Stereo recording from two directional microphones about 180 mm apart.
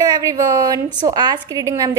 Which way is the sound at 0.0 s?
20° right (ahead or behind).